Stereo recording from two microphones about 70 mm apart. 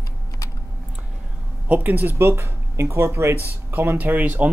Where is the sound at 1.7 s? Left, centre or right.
Right.